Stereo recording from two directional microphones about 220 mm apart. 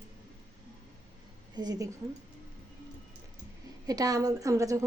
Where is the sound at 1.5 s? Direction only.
15° right (ahead or behind).